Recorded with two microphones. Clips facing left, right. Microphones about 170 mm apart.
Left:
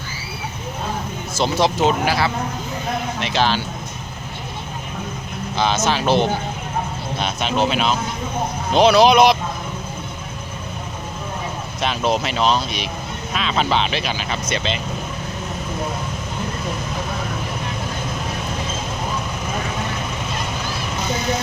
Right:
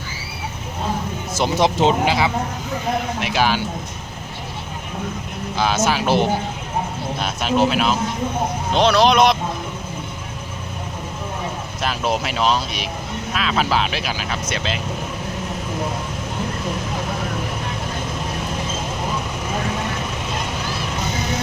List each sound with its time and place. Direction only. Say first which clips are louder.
1.4 s speech: even; 20° right (ahead or behind)
3.2 s speech: left 2 dB; 10° right (ahead or behind)
5.5 s speech: even; 10° right (ahead or behind)
11.8 s speech: left 2 dB; 5° right (ahead or behind)